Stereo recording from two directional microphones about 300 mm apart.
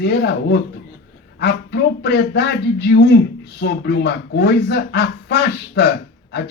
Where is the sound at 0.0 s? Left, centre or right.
Left.